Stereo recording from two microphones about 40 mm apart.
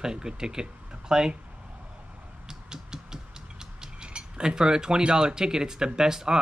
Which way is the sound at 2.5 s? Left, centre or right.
Centre.